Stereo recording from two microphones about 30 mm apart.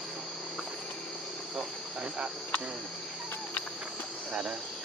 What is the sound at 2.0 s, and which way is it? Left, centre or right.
Cricket, right.